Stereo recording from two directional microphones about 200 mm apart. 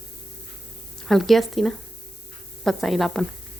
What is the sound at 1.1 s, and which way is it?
A woman's voice, centre (ahead or behind).